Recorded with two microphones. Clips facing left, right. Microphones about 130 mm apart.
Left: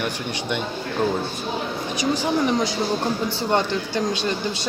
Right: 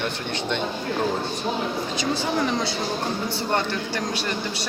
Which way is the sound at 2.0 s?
15° left (ahead or behind).